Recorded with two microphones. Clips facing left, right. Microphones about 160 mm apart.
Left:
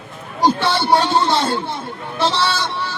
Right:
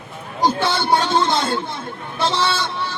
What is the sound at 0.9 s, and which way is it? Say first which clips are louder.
Speech: left 1 dB; 35° left (ahead or behind).